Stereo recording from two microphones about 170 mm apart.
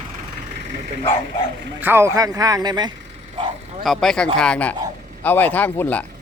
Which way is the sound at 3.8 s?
Centre (ahead or behind).